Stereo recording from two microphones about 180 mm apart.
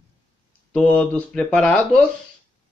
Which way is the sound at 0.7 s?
5° left (ahead or behind).